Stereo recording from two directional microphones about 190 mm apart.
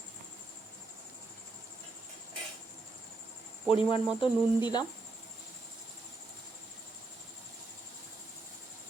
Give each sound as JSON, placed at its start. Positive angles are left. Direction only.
{"t": 3.7, "sound": "speech", "side_deg": 25}